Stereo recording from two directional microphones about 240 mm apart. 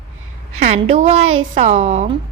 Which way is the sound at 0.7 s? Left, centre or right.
Right.